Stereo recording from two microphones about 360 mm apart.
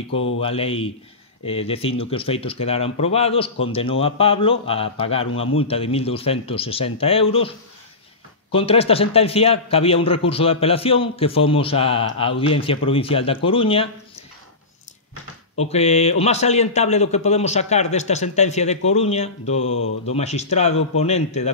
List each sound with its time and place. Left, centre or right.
0.4 s speech: centre
15.5 s speech: centre
19.6 s speech: left
20.1 s speech: centre